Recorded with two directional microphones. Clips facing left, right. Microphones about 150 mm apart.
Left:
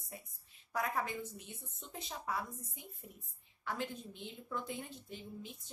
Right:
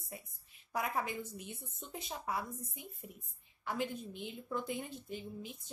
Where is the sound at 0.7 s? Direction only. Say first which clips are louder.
Right 1 dB; 10° right (ahead or behind).